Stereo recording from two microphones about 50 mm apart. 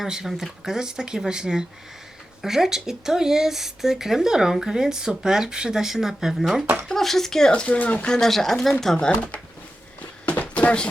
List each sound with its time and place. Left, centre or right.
0.0 s speech: centre
0.3 s speech: centre
0.6 s speech: centre
7.5 s speech: left
8.2 s speech: centre
10.2 s a sound: left